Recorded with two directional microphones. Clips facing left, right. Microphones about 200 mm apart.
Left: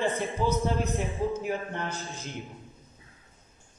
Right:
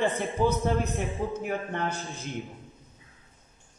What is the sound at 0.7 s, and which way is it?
A man's voice, centre (ahead or behind).